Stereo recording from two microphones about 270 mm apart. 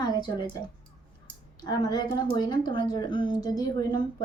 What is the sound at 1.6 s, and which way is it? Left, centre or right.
Speech, centre.